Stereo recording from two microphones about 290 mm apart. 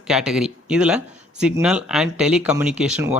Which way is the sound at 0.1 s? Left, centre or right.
Centre.